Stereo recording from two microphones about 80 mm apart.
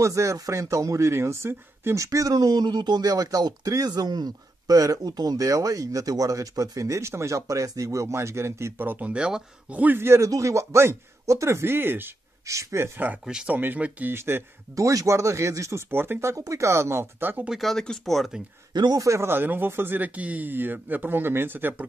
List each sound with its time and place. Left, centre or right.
0.0 s speech: right
9.1 s speech: centre
12.4 s speech: right
13.2 s speech: centre
13.6 s speech: right
14.1 s speech: right
15.9 s speech: right
17.5 s speech: centre
18.7 s speech: right
19.0 s speech: right